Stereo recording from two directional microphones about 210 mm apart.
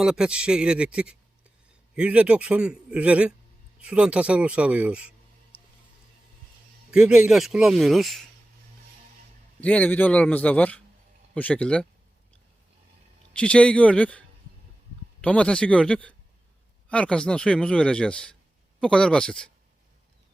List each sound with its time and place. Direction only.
0.0 s speech: 5° right (ahead or behind)
6.9 s speech: 5° right (ahead or behind)
9.6 s a man's voice: 5° left (ahead or behind)
13.3 s speech: 5° left (ahead or behind)